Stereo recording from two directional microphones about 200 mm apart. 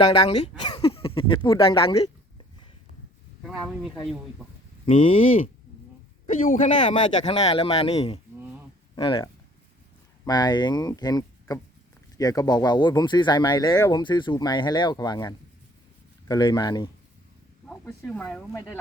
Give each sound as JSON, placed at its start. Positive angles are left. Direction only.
{"t": 0.0, "sound": "speech", "side_deg": 25}
{"t": 3.4, "sound": "speech", "side_deg": 0}
{"t": 4.9, "sound": "speech", "side_deg": 30}
{"t": 6.5, "sound": "speech", "side_deg": 40}
{"t": 6.9, "sound": "speech", "side_deg": 25}
{"t": 9.0, "sound": "speech", "side_deg": 25}
{"t": 17.7, "sound": "speech", "side_deg": 5}